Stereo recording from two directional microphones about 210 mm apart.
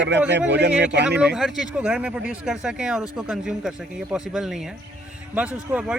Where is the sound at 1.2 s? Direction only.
5° right (ahead or behind).